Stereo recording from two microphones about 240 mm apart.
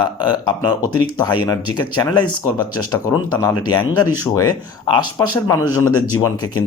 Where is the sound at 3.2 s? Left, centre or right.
Centre.